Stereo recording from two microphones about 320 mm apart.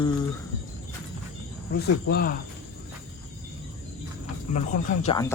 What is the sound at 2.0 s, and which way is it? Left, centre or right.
Speech, left.